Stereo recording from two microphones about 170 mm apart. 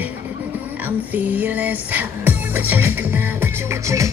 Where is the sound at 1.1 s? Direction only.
10° right (ahead or behind).